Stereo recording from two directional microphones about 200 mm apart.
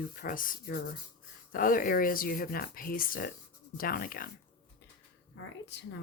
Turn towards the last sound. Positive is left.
turn(degrees=65)  # may be behind; listen again after turning